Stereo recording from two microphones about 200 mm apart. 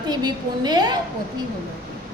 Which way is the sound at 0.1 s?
20° right (ahead or behind).